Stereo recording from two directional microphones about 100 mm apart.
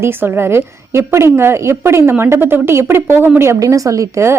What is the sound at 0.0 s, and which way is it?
A woman's voice, 25° right (ahead or behind).